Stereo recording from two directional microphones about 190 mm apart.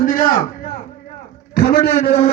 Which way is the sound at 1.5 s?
55° left (ahead or behind).